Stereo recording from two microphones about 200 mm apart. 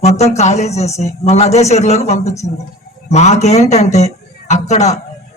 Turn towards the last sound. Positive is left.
turn(degrees=35)  # may be behind; listen again after turning